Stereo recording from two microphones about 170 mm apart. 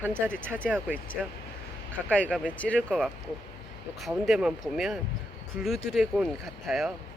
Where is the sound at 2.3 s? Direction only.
5° right (ahead or behind).